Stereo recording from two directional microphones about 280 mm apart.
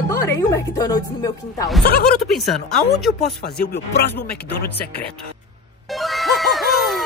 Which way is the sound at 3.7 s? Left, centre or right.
Left.